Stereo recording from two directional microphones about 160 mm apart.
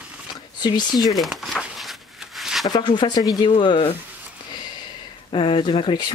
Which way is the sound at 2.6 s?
25° left (ahead or behind).